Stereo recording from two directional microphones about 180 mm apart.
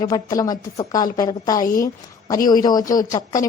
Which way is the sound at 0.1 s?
20° left (ahead or behind).